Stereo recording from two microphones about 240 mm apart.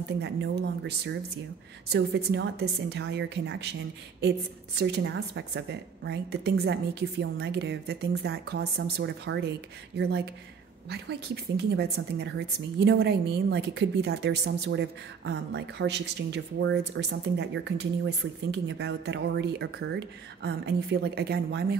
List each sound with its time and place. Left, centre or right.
0.2 s a woman's voice: right
4.7 s a woman's voice: right